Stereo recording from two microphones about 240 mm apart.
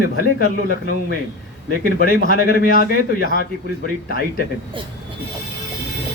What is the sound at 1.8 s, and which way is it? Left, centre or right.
Speech, left.